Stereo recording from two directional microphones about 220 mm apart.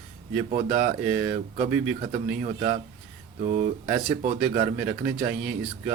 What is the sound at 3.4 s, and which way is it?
Speech, 35° right (ahead or behind).